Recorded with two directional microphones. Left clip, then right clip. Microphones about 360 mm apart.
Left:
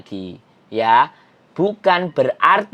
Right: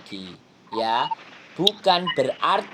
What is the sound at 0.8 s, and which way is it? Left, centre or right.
Speech, left.